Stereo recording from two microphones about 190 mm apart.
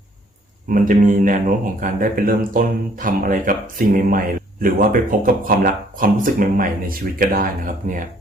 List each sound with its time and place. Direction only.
0.7 s speech: 45° right (ahead or behind)